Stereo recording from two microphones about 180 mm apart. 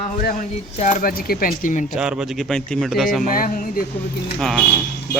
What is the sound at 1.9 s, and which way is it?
Speech, 5° right (ahead or behind).